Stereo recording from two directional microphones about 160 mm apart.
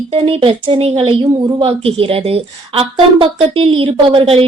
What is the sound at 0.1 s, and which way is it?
A woman's voice, 35° right (ahead or behind).